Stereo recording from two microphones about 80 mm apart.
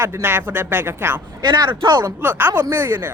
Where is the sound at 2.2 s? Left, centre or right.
Right.